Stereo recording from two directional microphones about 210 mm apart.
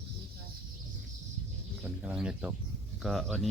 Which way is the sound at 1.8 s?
5° right (ahead or behind).